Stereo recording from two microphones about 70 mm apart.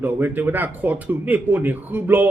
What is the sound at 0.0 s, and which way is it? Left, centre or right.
Mantra, right.